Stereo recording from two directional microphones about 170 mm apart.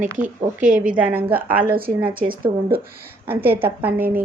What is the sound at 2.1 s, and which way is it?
Speech, 55° right (ahead or behind).